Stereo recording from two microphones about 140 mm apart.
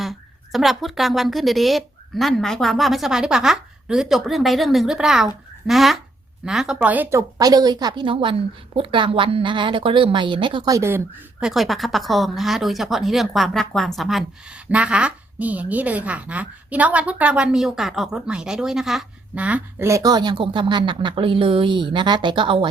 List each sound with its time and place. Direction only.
0.0 s speech: centre (ahead or behind); by 10.6 s 35° right (ahead or behind)
10.7 s a woman's voice: 20° right (ahead or behind)
11.3 s speech: centre (ahead or behind)
19.9 s speech: 25° right (ahead or behind)